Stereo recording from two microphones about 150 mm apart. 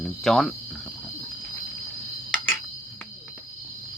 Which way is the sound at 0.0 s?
5° left (ahead or behind).